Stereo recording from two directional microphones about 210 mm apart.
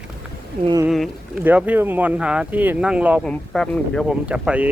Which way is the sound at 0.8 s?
Centre (ahead or behind).